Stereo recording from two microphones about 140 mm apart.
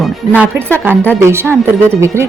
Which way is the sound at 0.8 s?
15° right (ahead or behind).